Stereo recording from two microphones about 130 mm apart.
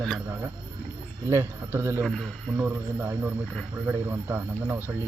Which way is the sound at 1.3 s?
20° right (ahead or behind).